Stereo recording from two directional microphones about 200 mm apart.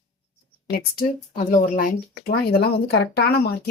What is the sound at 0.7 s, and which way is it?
Speech, 50° left (ahead or behind).